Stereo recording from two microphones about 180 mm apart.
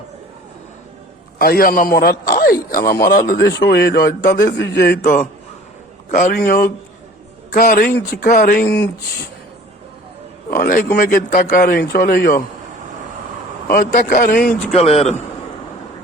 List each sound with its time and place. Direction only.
1.4 s a man's voice: 55° left (ahead or behind)
3.3 s speech: 65° left (ahead or behind)
4.5 s speech: 70° left (ahead or behind)
5.0 s a man's voice: 45° left (ahead or behind); by 8.9 s 65° left (ahead or behind)
10.5 s a man's voice: 50° left (ahead or behind)
13.9 s a man's voice: 50° left (ahead or behind)
14.7 s speech: 35° left (ahead or behind)